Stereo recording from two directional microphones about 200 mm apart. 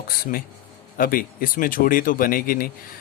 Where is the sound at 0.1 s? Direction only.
45° left (ahead or behind).